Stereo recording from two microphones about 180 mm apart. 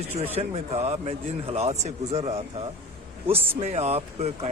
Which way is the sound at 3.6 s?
35° right (ahead or behind).